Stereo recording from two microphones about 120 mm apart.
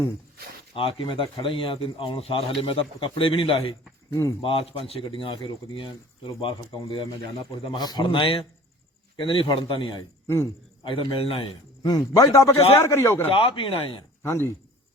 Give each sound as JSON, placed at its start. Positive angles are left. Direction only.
{"t": 0.8, "sound": "speech", "side_deg": 45}
{"t": 4.1, "sound": "a man's voice", "side_deg": 25}
{"t": 4.4, "sound": "speech", "side_deg": 50}
{"t": 10.2, "sound": "a man's voice", "side_deg": 20}
{"t": 10.8, "sound": "speech", "side_deg": 50}
{"t": 11.8, "sound": "a man's voice", "side_deg": 30}
{"t": 13.3, "sound": "speech", "side_deg": 45}
{"t": 14.2, "sound": "a man's voice", "side_deg": 20}